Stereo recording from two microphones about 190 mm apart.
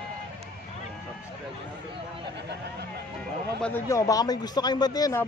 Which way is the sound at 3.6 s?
15° left (ahead or behind).